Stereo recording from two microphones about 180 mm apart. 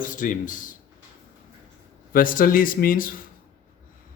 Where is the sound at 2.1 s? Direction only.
50° left (ahead or behind).